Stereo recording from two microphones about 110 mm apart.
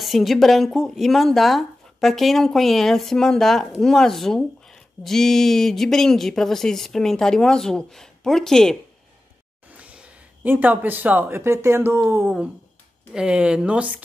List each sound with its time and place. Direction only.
0.0 s speech: centre (ahead or behind)
9.8 s speech: 10° right (ahead or behind)